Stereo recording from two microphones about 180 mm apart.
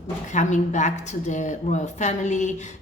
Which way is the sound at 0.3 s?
40° left (ahead or behind).